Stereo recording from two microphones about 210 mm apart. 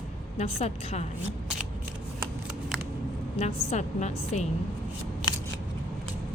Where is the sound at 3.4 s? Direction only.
35° left (ahead or behind).